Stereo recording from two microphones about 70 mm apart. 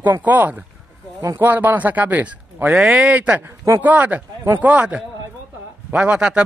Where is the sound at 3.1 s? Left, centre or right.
Centre.